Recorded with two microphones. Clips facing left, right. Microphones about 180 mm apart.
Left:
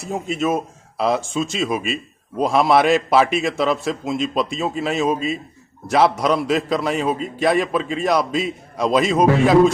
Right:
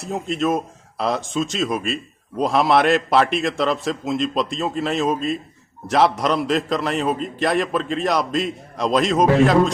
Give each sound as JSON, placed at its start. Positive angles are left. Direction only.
{"t": 0.0, "sound": "a man's voice", "side_deg": 0}